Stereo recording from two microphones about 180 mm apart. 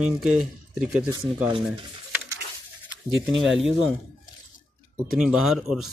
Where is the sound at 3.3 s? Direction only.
Centre (ahead or behind).